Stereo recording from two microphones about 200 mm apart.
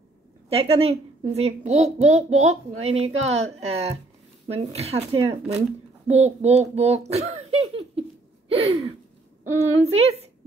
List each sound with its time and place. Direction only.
0.5 s a child's voice: 30° right (ahead or behind)
3.1 s a woman's voice: 80° right
3.3 s a child's voice: 30° right (ahead or behind)
7.1 s a sound: 30° right (ahead or behind)
9.4 s a child's voice: 30° right (ahead or behind)